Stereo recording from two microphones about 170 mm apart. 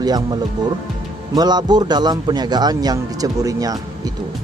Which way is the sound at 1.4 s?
25° right (ahead or behind).